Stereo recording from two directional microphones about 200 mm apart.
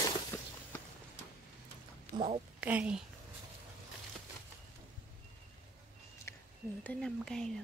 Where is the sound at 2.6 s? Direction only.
5° right (ahead or behind).